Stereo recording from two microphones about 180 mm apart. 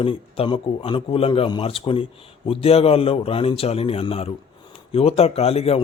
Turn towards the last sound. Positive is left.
turn(degrees=35)  # may be behind; listen again after turning